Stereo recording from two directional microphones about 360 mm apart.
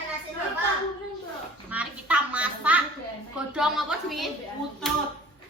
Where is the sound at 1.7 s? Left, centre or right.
Centre.